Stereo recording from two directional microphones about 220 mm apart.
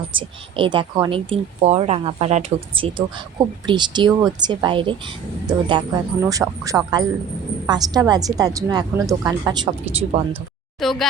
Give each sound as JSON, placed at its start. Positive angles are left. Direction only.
{"t": 0.2, "sound": "a woman's voice", "side_deg": -20}
{"t": 10.8, "sound": "speech", "side_deg": 0}